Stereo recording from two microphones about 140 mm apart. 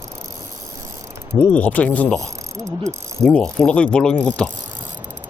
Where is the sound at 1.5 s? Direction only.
10° left (ahead or behind).